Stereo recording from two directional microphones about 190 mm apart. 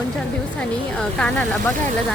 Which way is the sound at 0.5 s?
5° left (ahead or behind).